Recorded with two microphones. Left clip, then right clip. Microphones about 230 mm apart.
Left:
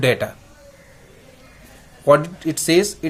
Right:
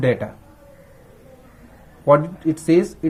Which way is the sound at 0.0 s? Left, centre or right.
Centre.